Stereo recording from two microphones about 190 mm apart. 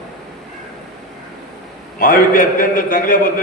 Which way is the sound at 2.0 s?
45° left (ahead or behind).